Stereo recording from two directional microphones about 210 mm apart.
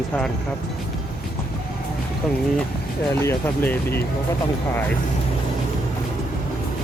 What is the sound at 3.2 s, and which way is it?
Speech, 10° left (ahead or behind).